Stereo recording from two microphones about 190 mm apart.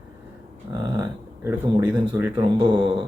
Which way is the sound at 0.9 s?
15° right (ahead or behind).